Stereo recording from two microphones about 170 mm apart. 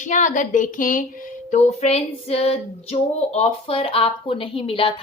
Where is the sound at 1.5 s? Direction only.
40° left (ahead or behind).